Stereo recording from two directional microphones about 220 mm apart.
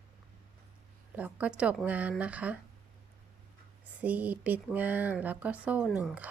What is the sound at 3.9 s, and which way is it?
Speech, 5° right (ahead or behind).